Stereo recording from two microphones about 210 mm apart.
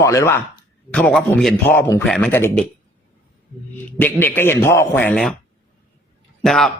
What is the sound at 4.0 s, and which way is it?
A man's voice, 10° left (ahead or behind).